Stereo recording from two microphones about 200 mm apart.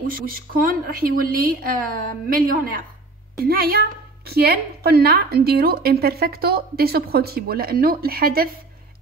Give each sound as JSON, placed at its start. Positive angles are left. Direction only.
{"t": 0.0, "sound": "a woman's voice", "side_deg": -45}